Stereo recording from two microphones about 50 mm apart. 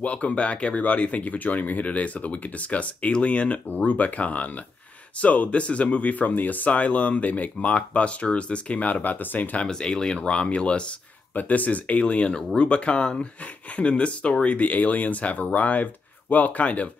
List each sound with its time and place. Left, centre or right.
0.0 s speech: left
9.7 s speech: centre